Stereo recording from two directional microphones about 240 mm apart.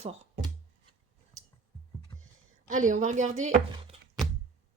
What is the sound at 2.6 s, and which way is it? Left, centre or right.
Speech, right.